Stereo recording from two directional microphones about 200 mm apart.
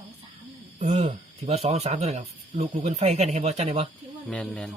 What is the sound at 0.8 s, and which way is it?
Speech, 35° right (ahead or behind).